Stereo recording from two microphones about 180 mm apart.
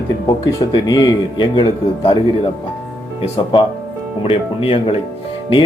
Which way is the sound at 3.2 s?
30° left (ahead or behind).